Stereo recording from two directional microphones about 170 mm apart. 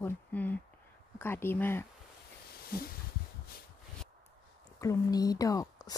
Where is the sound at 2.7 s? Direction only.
60° left (ahead or behind).